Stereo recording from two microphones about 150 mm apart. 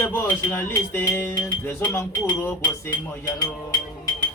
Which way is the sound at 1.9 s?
20° left (ahead or behind).